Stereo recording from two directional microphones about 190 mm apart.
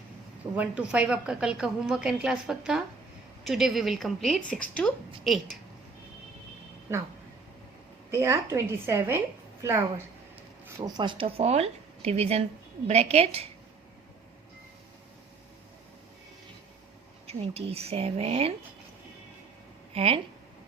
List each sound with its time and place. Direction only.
0.5 s a woman's voice: 5° right (ahead or behind)
8.1 s a woman's voice: 15° right (ahead or behind); by 13.5 s 35° right (ahead or behind)
17.2 s speech: 30° right (ahead or behind)
19.9 s speech: 30° right (ahead or behind)